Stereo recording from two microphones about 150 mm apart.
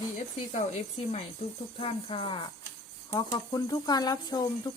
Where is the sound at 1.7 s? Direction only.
40° left (ahead or behind).